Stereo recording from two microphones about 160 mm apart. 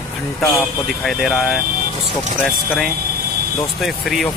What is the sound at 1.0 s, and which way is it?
Speech, centre (ahead or behind).